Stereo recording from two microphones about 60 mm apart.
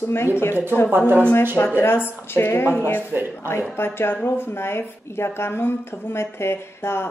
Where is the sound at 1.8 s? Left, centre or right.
Left.